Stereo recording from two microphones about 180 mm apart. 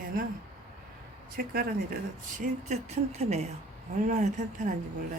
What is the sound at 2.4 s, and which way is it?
Speech, 40° right (ahead or behind).